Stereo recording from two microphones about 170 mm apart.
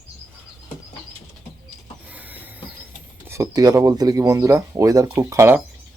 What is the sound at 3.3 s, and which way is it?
Speech, 20° right (ahead or behind).